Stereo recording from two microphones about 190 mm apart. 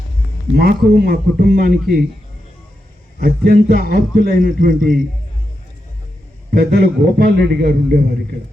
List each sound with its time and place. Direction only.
0.5 s a man's voice: 55° right (ahead or behind)
3.2 s a man's voice: 50° right (ahead or behind)
6.5 s a man's voice: 55° right (ahead or behind)